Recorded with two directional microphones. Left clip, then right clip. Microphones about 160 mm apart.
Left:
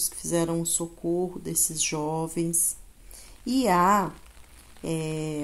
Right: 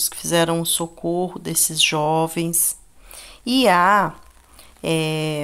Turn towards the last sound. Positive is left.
turn(degrees=-15)  # may be behind; listen again after turning